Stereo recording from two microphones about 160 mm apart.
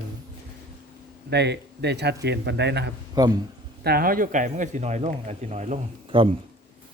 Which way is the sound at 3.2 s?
25° right (ahead or behind).